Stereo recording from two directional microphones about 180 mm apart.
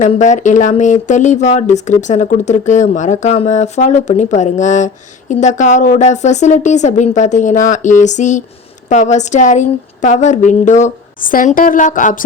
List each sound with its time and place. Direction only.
0.0 s speech: 40° left (ahead or behind)